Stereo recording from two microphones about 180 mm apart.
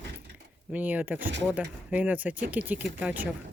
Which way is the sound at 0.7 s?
10° right (ahead or behind).